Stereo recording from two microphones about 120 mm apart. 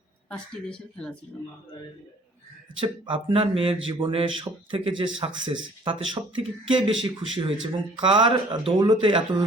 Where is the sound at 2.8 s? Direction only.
45° right (ahead or behind).